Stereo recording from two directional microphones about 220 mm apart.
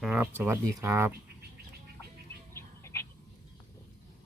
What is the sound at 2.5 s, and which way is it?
Bird, 10° left (ahead or behind).